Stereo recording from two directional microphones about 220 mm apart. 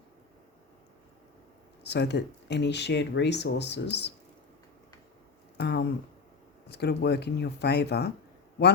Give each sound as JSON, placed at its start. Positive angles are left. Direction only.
{"t": 1.8, "sound": "speech", "side_deg": 50}
{"t": 5.5, "sound": "speech", "side_deg": 50}